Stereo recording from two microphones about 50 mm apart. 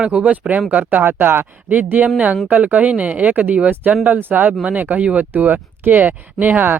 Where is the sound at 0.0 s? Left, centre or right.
Right.